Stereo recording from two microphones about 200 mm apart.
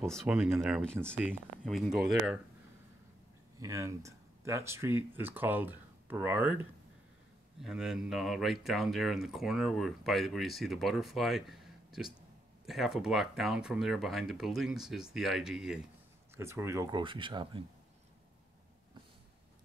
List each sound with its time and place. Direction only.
0.1 s speech: centre (ahead or behind)
1.1 s speech: 10° right (ahead or behind)
3.5 s speech: 15° right (ahead or behind)
16.3 s speech: 15° right (ahead or behind)